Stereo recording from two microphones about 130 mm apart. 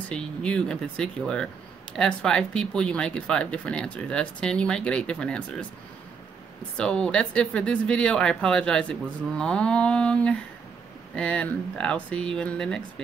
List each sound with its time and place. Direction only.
0.1 s speech: 10° left (ahead or behind)
6.8 s speech: 5° left (ahead or behind)